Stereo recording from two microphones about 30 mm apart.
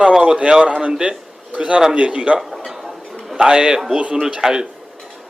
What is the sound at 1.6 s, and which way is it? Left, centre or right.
Speech, right.